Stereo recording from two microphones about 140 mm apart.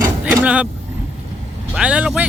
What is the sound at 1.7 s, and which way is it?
Vehicle, 10° right (ahead or behind).